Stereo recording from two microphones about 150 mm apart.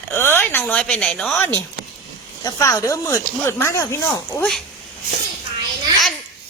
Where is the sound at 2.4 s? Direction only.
20° left (ahead or behind).